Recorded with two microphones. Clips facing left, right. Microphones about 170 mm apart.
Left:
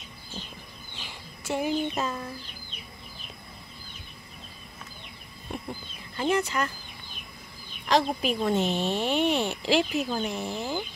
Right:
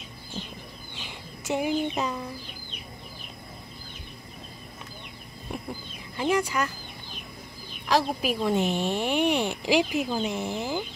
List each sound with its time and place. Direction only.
1.0 s a sound: 20° right (ahead or behind)
6.1 s speech: 10° right (ahead or behind)
7.9 s speech: 5° right (ahead or behind)